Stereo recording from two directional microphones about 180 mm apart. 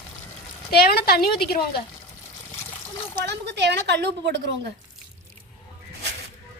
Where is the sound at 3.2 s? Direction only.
70° right (ahead or behind).